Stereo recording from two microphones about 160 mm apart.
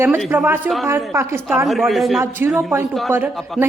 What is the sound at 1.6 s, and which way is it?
Speech, centre (ahead or behind).